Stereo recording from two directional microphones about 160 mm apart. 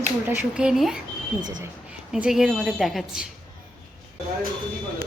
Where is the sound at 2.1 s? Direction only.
5° right (ahead or behind).